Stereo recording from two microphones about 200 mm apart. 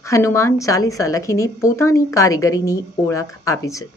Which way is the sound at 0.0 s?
15° left (ahead or behind).